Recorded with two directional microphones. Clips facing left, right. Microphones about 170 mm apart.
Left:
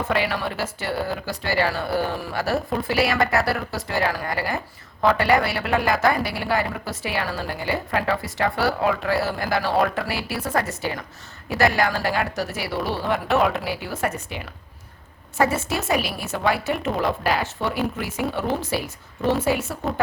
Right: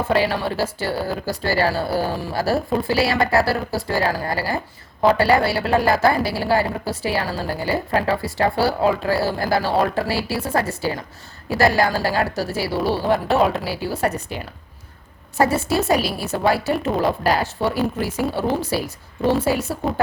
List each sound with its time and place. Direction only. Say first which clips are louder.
0.1 s a woman's voice: right 5 dB; 30° right (ahead or behind)